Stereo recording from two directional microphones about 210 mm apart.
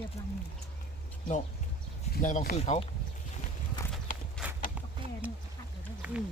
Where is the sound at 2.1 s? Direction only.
40° left (ahead or behind).